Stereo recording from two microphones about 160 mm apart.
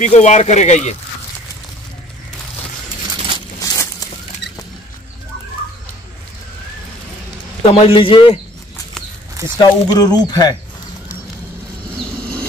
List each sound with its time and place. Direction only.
0.0 s speech: 50° left (ahead or behind)
3.7 s a sound: 20° left (ahead or behind)
7.6 s a man's voice: 35° left (ahead or behind)
9.6 s speech: 25° left (ahead or behind)